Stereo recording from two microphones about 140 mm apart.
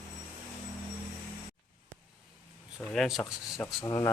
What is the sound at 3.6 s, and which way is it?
Speech, 20° left (ahead or behind).